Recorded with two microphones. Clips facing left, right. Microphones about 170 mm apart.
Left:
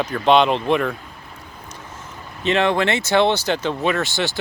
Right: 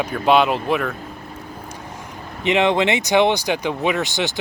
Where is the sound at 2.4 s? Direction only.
15° right (ahead or behind).